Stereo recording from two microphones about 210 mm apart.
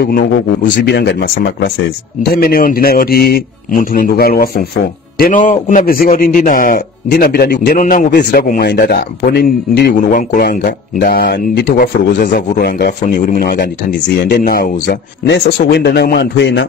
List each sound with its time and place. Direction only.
0.0 s a man's voice: 50° left (ahead or behind)